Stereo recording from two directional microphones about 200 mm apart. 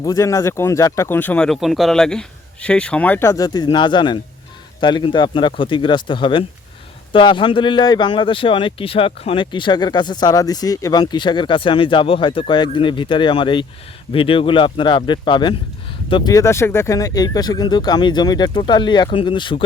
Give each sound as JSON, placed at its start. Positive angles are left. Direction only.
{"t": 0.0, "sound": "speech", "side_deg": 15}